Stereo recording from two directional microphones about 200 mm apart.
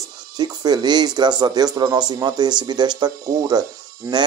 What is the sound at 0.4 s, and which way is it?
Speech, 20° right (ahead or behind).